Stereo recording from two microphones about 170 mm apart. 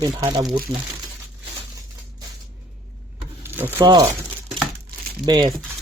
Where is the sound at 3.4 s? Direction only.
15° right (ahead or behind).